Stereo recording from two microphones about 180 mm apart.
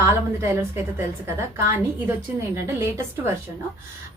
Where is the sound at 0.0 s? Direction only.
15° right (ahead or behind).